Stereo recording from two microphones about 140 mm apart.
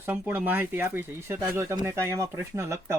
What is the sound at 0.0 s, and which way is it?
Speech, 15° right (ahead or behind).